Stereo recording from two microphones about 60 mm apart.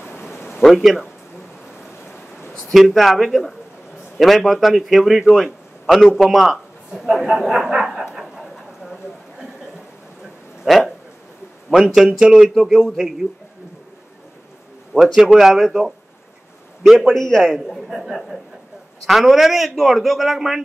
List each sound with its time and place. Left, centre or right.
0.6 s a man's voice: centre
2.7 s a man's voice: centre
10.6 s a man's voice: centre
14.9 s a man's voice: left
15.3 s a man's voice: centre